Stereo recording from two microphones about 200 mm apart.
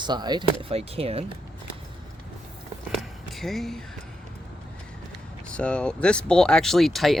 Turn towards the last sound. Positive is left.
turn(degrees=0)  # may be behind; listen again after turning